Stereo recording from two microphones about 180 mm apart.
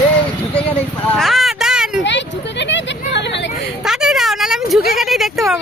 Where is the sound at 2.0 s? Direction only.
80° left.